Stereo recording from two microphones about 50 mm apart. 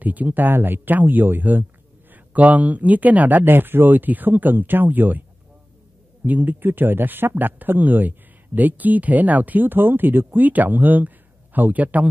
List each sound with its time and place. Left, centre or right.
0.0 s speech: right
6.2 s speech: right